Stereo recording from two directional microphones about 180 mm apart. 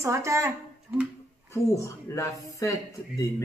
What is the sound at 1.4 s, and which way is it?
Speech, 15° left (ahead or behind).